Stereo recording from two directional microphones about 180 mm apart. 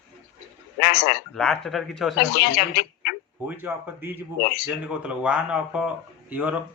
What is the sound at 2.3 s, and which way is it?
Speech, 65° left (ahead or behind).